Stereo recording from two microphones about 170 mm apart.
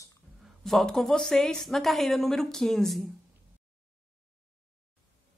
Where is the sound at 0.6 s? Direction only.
Centre (ahead or behind).